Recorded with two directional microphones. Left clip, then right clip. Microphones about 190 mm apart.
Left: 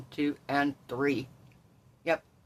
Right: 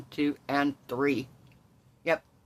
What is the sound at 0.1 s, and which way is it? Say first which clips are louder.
Speech: right 1 dB; 25° right (ahead or behind).